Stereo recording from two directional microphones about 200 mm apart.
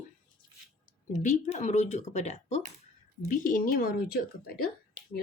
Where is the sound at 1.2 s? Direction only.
35° left (ahead or behind).